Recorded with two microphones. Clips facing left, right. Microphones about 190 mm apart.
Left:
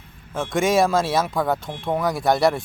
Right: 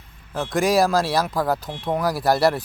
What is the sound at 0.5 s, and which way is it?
Speech, centre (ahead or behind).